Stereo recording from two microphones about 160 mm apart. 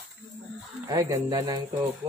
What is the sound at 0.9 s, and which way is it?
Speech, 20° right (ahead or behind).